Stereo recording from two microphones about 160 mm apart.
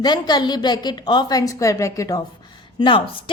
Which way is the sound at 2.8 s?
30° left (ahead or behind).